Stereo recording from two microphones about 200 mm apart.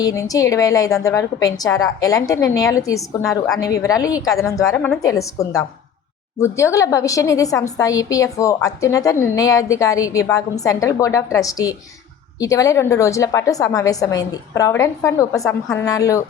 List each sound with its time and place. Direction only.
0.0 s a woman's voice: 15° left (ahead or behind)